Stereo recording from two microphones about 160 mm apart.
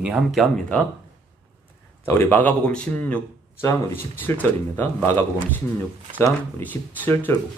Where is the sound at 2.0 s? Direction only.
15° left (ahead or behind).